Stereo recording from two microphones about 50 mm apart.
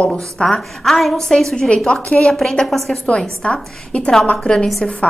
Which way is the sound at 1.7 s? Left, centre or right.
Centre.